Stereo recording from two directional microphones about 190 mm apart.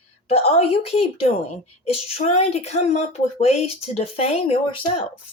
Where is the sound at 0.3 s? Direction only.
35° left (ahead or behind).